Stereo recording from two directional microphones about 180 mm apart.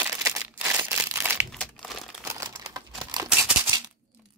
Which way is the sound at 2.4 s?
20° right (ahead or behind).